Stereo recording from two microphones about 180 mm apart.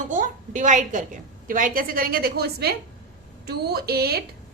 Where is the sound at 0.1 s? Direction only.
45° right (ahead or behind).